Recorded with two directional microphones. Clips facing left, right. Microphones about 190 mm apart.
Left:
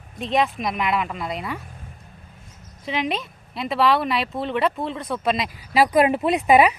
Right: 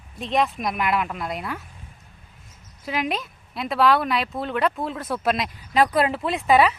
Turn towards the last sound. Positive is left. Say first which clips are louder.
# left 2 dB
turn(degrees=15)  # may be behind; listen again after turning